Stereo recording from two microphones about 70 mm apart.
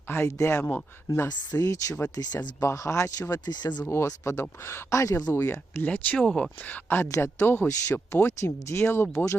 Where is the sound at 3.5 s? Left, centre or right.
Left.